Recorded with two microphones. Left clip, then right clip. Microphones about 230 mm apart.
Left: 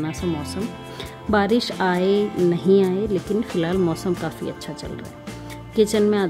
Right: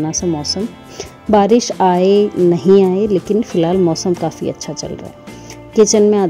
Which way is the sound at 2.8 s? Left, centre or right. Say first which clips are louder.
Right 8 dB; centre.